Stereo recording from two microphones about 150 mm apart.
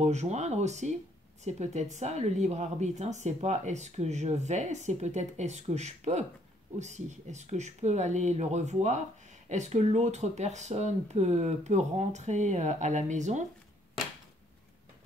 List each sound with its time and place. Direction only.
0.0 s speech: 50° right (ahead or behind)